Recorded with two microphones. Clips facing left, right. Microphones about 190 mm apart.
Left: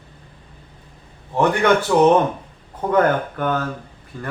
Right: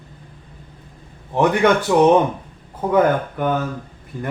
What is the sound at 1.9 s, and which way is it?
Speech, 10° right (ahead or behind).